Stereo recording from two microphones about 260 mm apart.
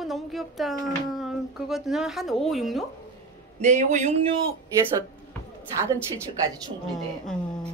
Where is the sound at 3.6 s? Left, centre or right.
Right.